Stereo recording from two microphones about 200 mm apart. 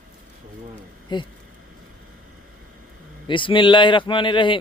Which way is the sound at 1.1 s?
20° left (ahead or behind).